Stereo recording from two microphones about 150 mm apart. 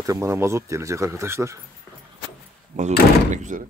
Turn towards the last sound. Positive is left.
turn(degrees=-55)  # may be behind; listen again after turning